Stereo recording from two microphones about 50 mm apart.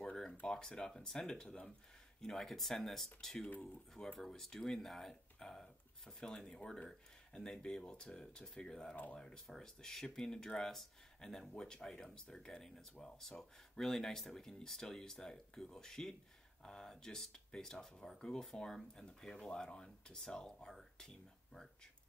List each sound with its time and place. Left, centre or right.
0.5 s speech: centre
7.8 s speech: left
18.5 s speech: left
19.2 s speech: centre